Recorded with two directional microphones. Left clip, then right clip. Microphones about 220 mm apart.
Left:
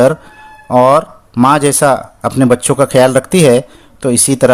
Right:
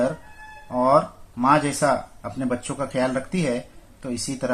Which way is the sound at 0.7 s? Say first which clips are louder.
Left 11 dB; 50° left (ahead or behind).